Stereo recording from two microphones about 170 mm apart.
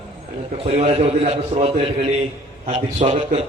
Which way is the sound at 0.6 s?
40° right (ahead or behind).